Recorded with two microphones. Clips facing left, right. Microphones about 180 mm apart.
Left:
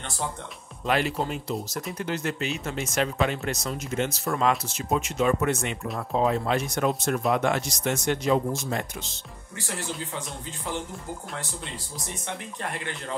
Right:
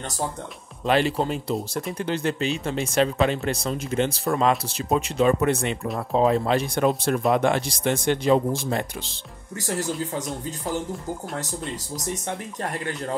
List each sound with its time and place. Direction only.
0.8 s speech: 30° right (ahead or behind)
12.7 s speech: 40° right (ahead or behind)